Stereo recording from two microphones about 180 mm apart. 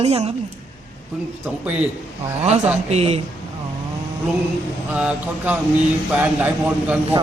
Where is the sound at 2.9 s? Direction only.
35° right (ahead or behind).